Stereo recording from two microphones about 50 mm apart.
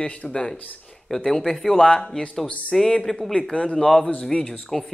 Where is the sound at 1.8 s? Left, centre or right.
Centre.